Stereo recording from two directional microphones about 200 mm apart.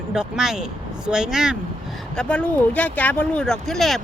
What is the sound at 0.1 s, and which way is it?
Speech, 5° right (ahead or behind).